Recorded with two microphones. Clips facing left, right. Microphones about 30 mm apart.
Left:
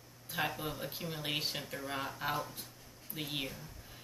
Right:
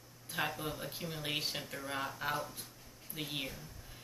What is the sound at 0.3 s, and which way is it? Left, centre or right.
Speech, centre.